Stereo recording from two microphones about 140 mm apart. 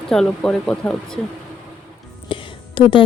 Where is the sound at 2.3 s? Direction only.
35° left (ahead or behind).